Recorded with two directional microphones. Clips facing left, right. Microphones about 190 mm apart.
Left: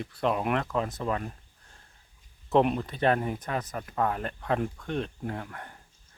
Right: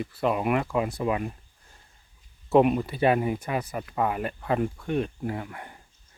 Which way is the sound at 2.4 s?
5° right (ahead or behind).